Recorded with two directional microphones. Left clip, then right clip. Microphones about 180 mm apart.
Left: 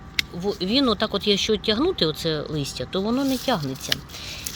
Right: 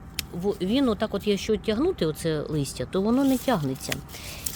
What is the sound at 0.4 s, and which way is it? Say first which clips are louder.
Speech: left 2 dB; 20° right (ahead or behind).